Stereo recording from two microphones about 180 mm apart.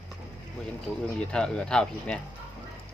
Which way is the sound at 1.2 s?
5° left (ahead or behind).